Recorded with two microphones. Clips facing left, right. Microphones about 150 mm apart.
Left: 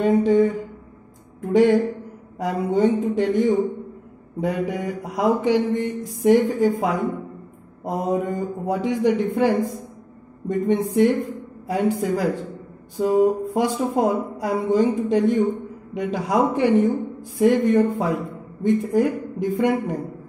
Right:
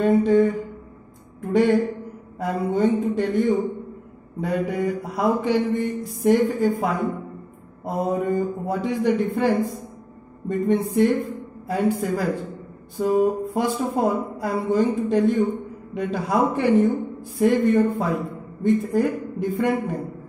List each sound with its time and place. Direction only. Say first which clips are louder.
0.0 s mantra: even; 15° left (ahead or behind)
1.4 s speech: left 2 dB; 15° left (ahead or behind)
2.3 s mantra: left 2 dB; 15° left (ahead or behind)